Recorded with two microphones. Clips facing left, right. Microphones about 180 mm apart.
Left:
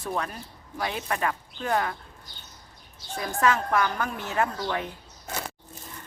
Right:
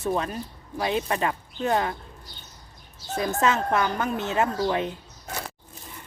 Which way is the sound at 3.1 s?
25° right (ahead or behind).